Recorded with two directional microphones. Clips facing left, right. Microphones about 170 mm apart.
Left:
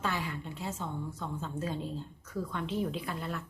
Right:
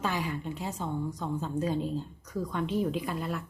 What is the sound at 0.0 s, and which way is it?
A woman's voice, 15° right (ahead or behind).